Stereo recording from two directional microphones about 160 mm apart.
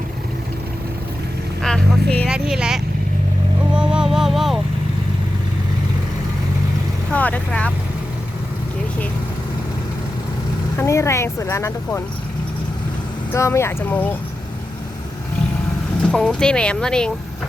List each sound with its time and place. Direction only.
1.6 s vehicle: 5° left (ahead or behind)
2.2 s speech: 5° right (ahead or behind)
3.8 s music: 5° right (ahead or behind)
7.1 s vehicle: 10° left (ahead or behind)
10.8 s speech: 20° left (ahead or behind)
13.3 s speech: 15° left (ahead or behind)
16.1 s speech: 5° left (ahead or behind)